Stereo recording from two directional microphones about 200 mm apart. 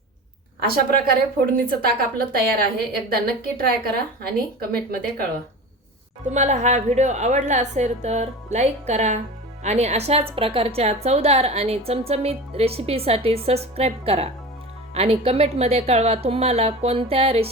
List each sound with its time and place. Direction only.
1.5 s a woman's voice: 45° right (ahead or behind)
6.3 s a woman's voice: 35° right (ahead or behind)